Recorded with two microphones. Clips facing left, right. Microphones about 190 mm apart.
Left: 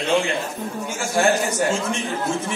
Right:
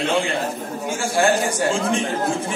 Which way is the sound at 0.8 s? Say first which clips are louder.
Right 1 dB; 30° right (ahead or behind).